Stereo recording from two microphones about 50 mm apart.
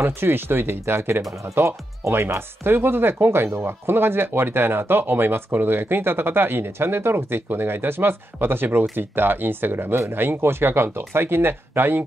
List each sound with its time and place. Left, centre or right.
0.0 s speech: right